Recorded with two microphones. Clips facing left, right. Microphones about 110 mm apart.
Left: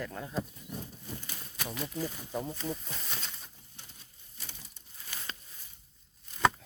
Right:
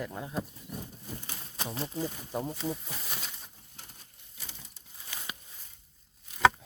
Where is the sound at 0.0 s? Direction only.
15° right (ahead or behind).